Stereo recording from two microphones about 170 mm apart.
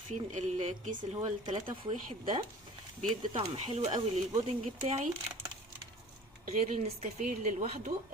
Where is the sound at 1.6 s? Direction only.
30° right (ahead or behind).